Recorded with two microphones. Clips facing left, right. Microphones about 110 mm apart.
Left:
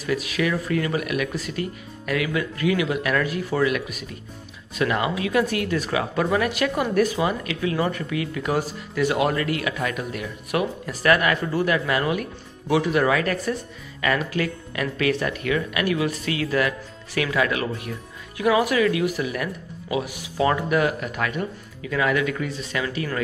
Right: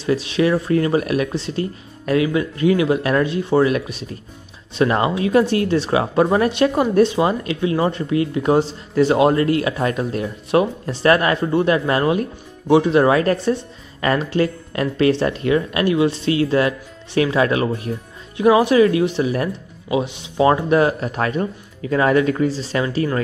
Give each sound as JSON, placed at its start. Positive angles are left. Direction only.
{"t": 0.0, "sound": "speech", "side_deg": -30}